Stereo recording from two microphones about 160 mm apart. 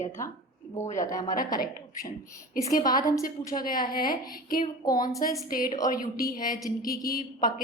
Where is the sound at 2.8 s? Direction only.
25° left (ahead or behind).